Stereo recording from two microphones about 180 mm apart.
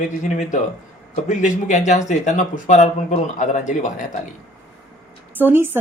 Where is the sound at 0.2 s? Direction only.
40° left (ahead or behind).